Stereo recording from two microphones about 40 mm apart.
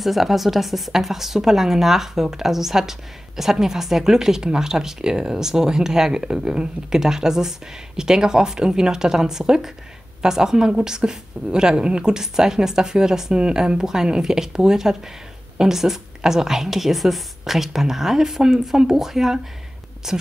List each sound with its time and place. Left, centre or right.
0.0 s a woman's voice: centre